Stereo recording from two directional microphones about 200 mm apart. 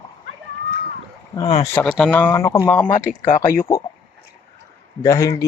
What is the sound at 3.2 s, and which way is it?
Speech, 45° left (ahead or behind).